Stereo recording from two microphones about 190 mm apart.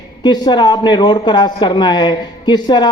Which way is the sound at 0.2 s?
20° left (ahead or behind).